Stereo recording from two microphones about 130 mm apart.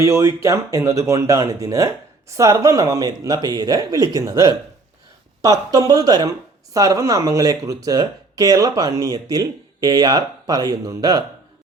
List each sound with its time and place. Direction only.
0.0 s speech: 25° right (ahead or behind)